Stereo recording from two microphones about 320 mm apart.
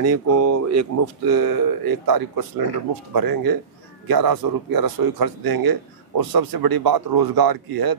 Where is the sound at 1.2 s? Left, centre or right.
Right.